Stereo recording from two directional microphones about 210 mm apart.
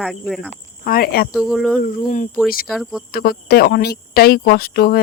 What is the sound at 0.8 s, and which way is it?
Speech, 45° left (ahead or behind).